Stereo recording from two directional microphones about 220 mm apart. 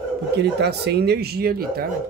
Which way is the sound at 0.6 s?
50° right (ahead or behind).